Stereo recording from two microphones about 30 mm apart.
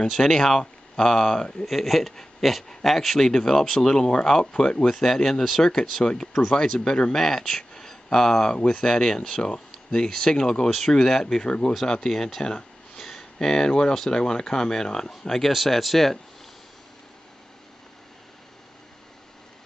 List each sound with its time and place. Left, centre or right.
0.1 s speech: centre
1.7 s speech: centre
3.2 s speech: centre
4.8 s speech: centre
7.2 s speech: centre
10.0 s speech: centre
12.9 s a sound: centre
14.1 s speech: left
15.4 s speech: centre